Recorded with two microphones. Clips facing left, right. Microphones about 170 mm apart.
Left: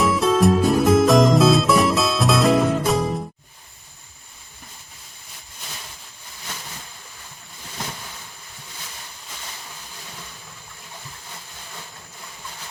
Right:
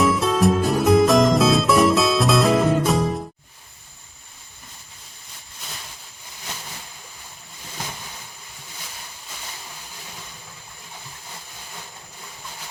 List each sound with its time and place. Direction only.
0.0 s music: centre (ahead or behind)